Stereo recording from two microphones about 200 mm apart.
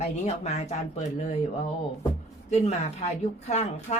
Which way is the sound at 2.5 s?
35° left (ahead or behind).